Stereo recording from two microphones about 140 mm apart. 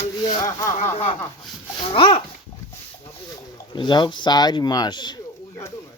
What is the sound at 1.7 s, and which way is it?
Speech, 35° left (ahead or behind).